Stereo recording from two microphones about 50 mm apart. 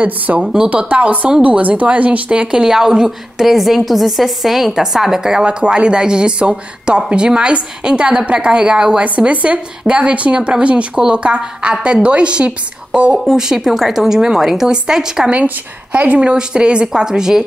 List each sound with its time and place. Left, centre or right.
0.4 s speech: centre
0.7 s speech: right
2.6 s a woman's voice: centre
9.0 s speech: right
13.4 s speech: centre
15.2 s speech: right
16.2 s speech: centre